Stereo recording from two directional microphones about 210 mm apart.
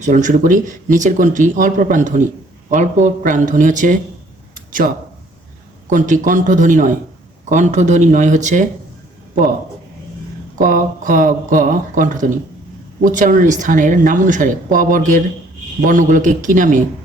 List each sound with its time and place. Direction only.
0.0 s speech: 35° right (ahead or behind)
4.5 s a sound: 40° right (ahead or behind)
5.9 s speech: 35° right (ahead or behind)
10.5 s speech: 40° right (ahead or behind)